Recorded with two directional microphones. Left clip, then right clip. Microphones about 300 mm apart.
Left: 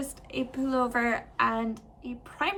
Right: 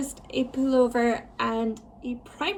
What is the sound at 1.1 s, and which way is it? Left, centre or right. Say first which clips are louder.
Speech: left 1 dB; left.